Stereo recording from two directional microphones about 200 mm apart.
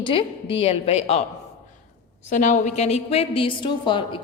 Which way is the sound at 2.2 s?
40° left (ahead or behind).